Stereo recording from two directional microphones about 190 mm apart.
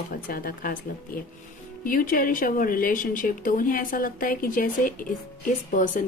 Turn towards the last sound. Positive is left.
turn(degrees=40)  # may be behind; listen again after turning